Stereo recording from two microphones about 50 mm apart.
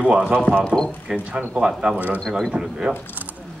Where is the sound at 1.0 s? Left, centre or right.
Right.